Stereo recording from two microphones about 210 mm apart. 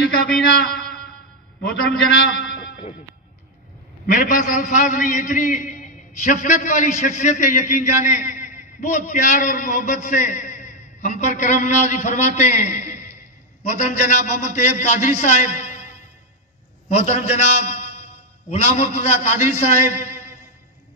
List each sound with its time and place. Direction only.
1.6 s a man's voice: 50° left (ahead or behind)
4.0 s a man's voice: 40° left (ahead or behind)
16.9 s a man's voice: 30° left (ahead or behind)